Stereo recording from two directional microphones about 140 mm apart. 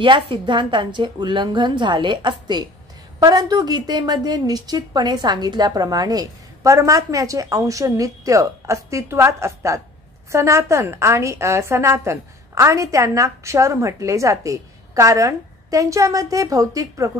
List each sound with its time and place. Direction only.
0.0 s a woman's voice: 35° right (ahead or behind)